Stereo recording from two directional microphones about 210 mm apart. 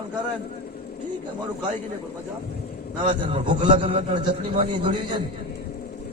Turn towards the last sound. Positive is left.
turn(degrees=-25)  # may be behind; listen again after turning